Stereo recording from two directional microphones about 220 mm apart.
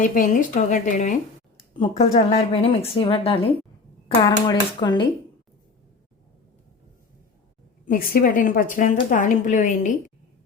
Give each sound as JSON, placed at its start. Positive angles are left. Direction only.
{"t": 0.0, "sound": "a woman's voice", "side_deg": 35}
{"t": 7.9, "sound": "speech", "side_deg": 40}